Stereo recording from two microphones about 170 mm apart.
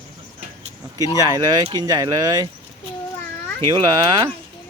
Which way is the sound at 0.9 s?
20° right (ahead or behind).